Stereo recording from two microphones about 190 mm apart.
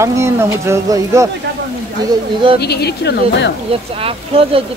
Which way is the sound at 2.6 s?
60° left (ahead or behind).